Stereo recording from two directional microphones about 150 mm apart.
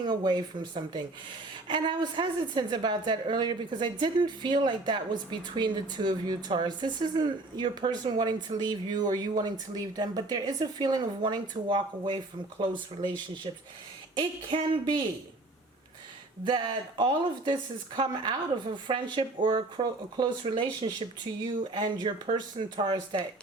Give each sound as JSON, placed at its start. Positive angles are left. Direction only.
{"t": 0.0, "sound": "a woman's voice", "side_deg": -25}
{"t": 16.4, "sound": "a woman's voice", "side_deg": -30}